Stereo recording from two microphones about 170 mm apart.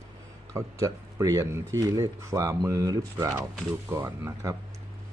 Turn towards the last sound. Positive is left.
turn(degrees=-15)  # may be behind; listen again after turning